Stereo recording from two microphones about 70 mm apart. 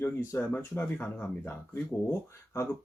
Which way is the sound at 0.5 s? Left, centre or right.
Left.